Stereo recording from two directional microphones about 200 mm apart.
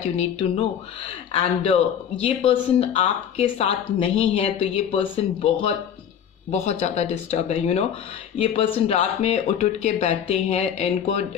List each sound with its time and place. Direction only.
0.0 s speech: 35° left (ahead or behind)